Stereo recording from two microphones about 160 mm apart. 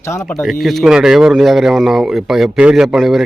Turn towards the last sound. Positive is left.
turn(degrees=0)  # may be behind; listen again after turning